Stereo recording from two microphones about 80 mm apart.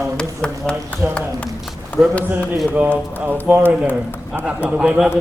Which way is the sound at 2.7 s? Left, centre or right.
Right.